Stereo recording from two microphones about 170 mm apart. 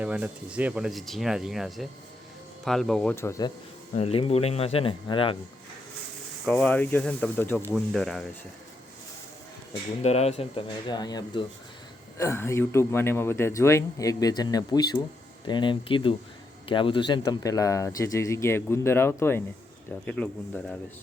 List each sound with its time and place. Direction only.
0.0 s speech: 5° right (ahead or behind)
3.2 s speech: 20° left (ahead or behind)
3.9 s speech: 35° left (ahead or behind)
6.4 s speech: 5° left (ahead or behind)
10.0 s speech: 40° left (ahead or behind); by 20.7 s 5° left (ahead or behind)